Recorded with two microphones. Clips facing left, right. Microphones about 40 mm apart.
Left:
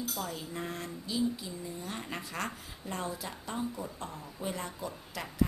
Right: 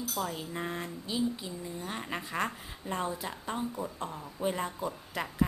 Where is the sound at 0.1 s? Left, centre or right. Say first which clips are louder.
Right 3 dB; centre.